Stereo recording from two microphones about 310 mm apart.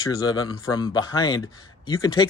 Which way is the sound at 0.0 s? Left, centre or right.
Centre.